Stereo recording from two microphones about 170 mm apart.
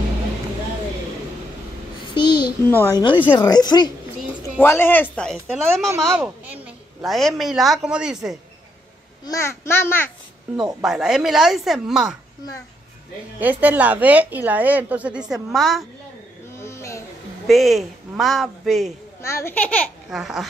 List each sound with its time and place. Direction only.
2.0 s a sound: 30° left (ahead or behind)
2.7 s speech: 15° left (ahead or behind)
3.0 s speech: 30° left (ahead or behind)
4.6 s a woman's voice: 10° left (ahead or behind)
9.2 s speech: 20° left (ahead or behind)
10.8 s a woman's voice: 5° right (ahead or behind)
13.4 s a woman's voice: 10° right (ahead or behind)
16.5 s a sound: 15° left (ahead or behind)
17.5 s a woman's voice: centre (ahead or behind)
19.2 s speech: 15° left (ahead or behind)
20.1 s a woman's voice: centre (ahead or behind)